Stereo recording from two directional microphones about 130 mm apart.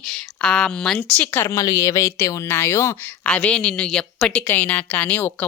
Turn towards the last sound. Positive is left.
turn(degrees=15)  # may be behind; listen again after turning